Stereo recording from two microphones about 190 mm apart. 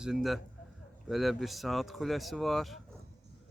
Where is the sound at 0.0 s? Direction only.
Centre (ahead or behind).